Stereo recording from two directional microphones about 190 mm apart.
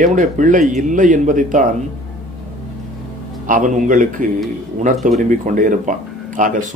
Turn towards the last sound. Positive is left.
turn(degrees=-45)  # may be behind; listen again after turning